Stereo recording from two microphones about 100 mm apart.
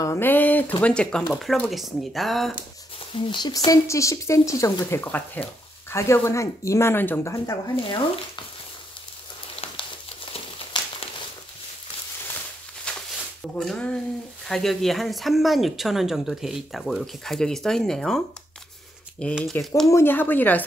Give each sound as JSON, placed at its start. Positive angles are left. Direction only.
{"t": 0.0, "sound": "speech", "side_deg": 25}
{"t": 1.7, "sound": "a woman's voice", "side_deg": 0}
{"t": 3.2, "sound": "speech", "side_deg": 50}
{"t": 4.8, "sound": "speech", "side_deg": 20}
{"t": 7.3, "sound": "speech", "side_deg": 30}
{"t": 7.7, "sound": "speech", "side_deg": 60}
{"t": 10.8, "sound": "crumpling", "side_deg": 45}
{"t": 12.9, "sound": "a sound", "side_deg": 10}
{"t": 13.6, "sound": "a woman's voice", "side_deg": 5}
{"t": 19.9, "sound": "speech", "side_deg": 25}